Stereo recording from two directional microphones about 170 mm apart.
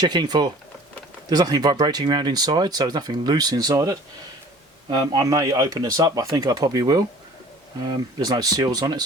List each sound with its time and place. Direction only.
0.0 s speech: 25° right (ahead or behind)